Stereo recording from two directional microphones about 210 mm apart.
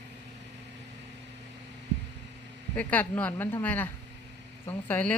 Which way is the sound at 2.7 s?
10° left (ahead or behind).